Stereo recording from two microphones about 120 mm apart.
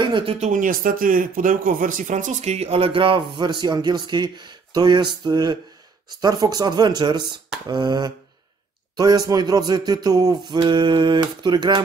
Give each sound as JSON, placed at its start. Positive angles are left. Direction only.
{"t": 0.0, "sound": "speech", "side_deg": -45}
{"t": 0.4, "sound": "a man's voice", "side_deg": -90}